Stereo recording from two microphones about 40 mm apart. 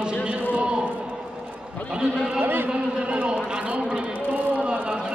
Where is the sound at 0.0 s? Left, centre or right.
Right.